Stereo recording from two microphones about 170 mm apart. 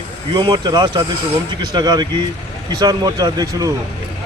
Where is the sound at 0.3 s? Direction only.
25° right (ahead or behind).